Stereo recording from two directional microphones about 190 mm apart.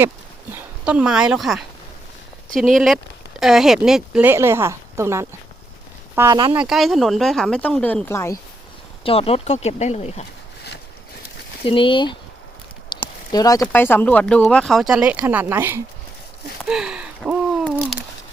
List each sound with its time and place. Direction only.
0.9 s speech: 5° right (ahead or behind)
6.6 s speech: centre (ahead or behind); by 8.4 s 15° left (ahead or behind)
9.0 s speech: 30° left (ahead or behind)
11.6 s speech: 25° left (ahead or behind)
12.9 s a sound: 25° left (ahead or behind)
13.3 s speech: 20° left (ahead or behind); by 15.8 s 10° right (ahead or behind)
16.6 s a sound: 5° right (ahead or behind)